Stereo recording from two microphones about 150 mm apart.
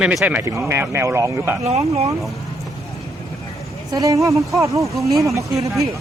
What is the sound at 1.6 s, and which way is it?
Speech, 45° right (ahead or behind).